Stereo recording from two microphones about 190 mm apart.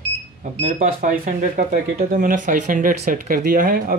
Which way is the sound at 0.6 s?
40° right (ahead or behind).